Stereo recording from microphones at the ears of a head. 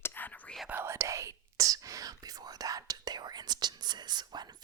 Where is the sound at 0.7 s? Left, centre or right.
Right.